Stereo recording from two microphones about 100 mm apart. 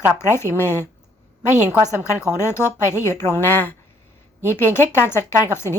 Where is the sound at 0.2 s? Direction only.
25° left (ahead or behind).